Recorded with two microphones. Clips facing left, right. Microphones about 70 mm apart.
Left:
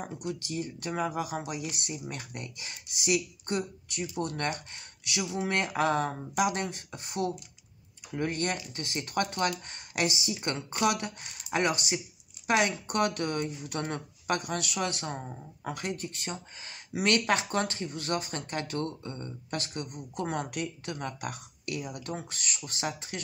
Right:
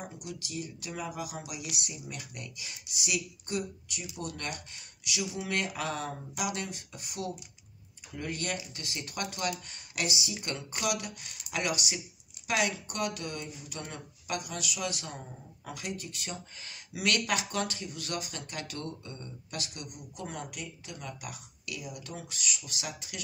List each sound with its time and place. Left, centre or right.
0.0 s speech: left
20.2 s speech: left